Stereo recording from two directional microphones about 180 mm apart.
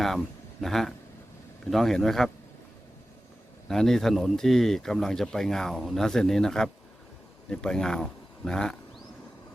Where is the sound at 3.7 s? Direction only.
Centre (ahead or behind).